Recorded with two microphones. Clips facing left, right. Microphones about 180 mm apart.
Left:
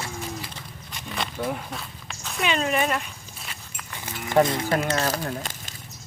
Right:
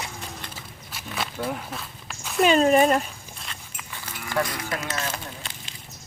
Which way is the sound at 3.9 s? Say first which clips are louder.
Left 3 dB; 20° left (ahead or behind).